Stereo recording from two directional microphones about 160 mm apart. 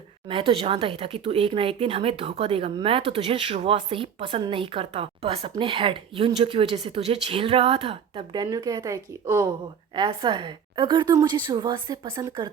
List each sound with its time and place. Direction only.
0.3 s speech: 35° right (ahead or behind); by 9.5 s 15° right (ahead or behind)
9.9 s a woman's voice: 30° right (ahead or behind)
12.1 s a woman's voice: 20° right (ahead or behind)